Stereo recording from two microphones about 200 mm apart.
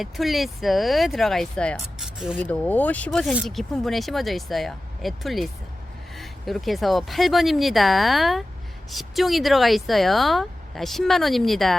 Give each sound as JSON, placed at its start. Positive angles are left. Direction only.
{"t": 0.0, "sound": "speech", "side_deg": 0}
{"t": 2.4, "sound": "speech", "side_deg": 10}